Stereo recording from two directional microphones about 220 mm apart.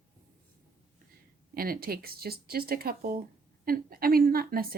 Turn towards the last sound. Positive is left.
turn(degrees=-40)  # may be behind; listen again after turning